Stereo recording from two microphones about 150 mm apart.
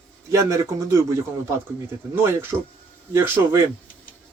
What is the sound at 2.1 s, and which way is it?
Speech, 15° right (ahead or behind).